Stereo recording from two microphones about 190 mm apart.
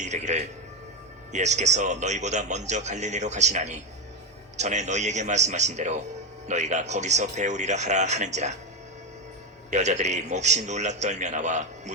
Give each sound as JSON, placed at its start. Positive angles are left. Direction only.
{"t": 0.0, "sound": "speech", "side_deg": -40}
{"t": 9.6, "sound": "speech", "side_deg": -40}